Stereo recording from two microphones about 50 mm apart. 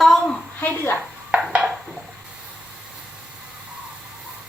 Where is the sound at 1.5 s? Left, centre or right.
Centre.